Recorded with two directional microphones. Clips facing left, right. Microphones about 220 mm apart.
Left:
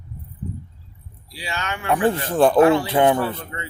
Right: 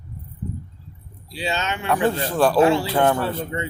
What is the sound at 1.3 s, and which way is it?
A man's voice, 25° right (ahead or behind).